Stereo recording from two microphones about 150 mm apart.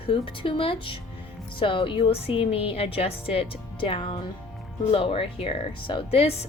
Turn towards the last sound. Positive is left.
turn(degrees=40)  # may be behind; listen again after turning